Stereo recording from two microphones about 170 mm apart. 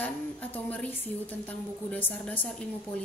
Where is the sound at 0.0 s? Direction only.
10° left (ahead or behind).